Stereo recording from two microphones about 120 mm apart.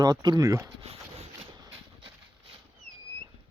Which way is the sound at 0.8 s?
55° right (ahead or behind).